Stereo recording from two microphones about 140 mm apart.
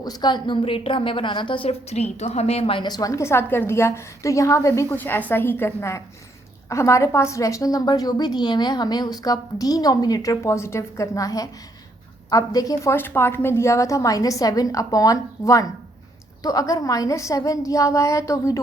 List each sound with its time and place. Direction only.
0.0 s a woman's voice: 30° left (ahead or behind)